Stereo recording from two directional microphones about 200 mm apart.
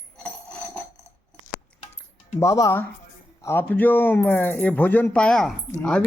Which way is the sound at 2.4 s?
15° left (ahead or behind).